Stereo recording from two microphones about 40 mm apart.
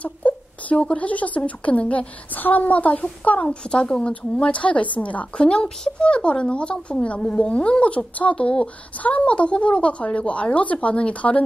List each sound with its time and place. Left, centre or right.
0.0 s speech: left
2.4 s a woman's voice: left
3.4 s speech: left
4.4 s a woman's voice: left
5.4 s speech: left